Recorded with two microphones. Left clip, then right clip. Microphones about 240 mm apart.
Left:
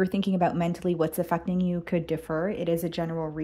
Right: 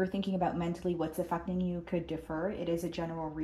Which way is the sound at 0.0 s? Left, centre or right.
Left.